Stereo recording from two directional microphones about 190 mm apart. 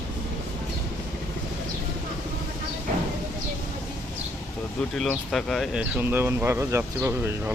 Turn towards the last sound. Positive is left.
turn(degrees=-10)  # may be behind; listen again after turning